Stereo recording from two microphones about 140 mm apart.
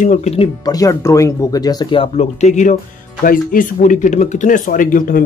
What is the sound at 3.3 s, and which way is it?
Speech, 70° left (ahead or behind).